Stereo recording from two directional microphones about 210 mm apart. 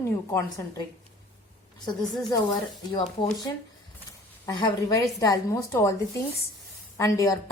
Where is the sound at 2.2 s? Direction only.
20° left (ahead or behind).